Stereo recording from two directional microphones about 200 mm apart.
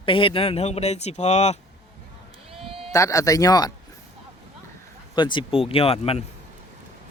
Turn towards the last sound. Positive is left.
turn(degrees=30)  # may be behind; listen again after turning